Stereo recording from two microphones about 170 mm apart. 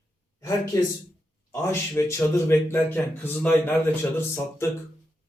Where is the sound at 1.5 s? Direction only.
15° left (ahead or behind).